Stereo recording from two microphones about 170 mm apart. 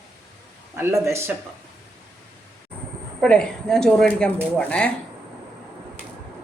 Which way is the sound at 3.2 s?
5° left (ahead or behind).